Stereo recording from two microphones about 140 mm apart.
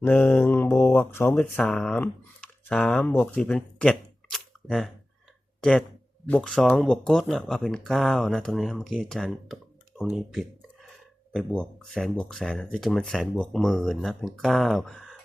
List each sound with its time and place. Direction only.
0.0 s mantra: 15° left (ahead or behind)
1.5 s speech: 5° left (ahead or behind)
10.0 s a sound: centre (ahead or behind)
11.3 s speech: 5° left (ahead or behind)